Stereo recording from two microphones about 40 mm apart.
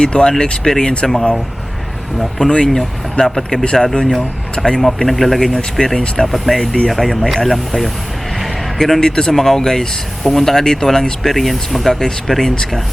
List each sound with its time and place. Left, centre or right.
0.0 s speech: left
2.5 s speech: centre
3.8 s speech: centre
4.5 s speech: centre
5.4 s speech: centre
9.0 s speech: centre